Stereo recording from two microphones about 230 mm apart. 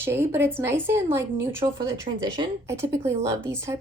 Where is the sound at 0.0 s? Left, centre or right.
Centre.